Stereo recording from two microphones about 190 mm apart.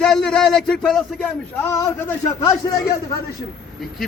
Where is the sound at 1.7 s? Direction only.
15° left (ahead or behind).